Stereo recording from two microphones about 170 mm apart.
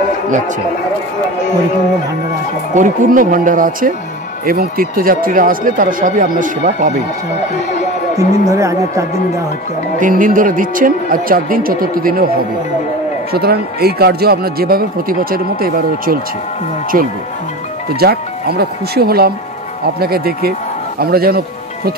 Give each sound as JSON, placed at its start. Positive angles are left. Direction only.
{"t": 2.7, "sound": "speech", "side_deg": -50}
{"t": 8.2, "sound": "speech", "side_deg": -20}
{"t": 9.9, "sound": "speech", "side_deg": -50}
{"t": 13.3, "sound": "speech", "side_deg": -65}
{"t": 17.9, "sound": "speech", "side_deg": -70}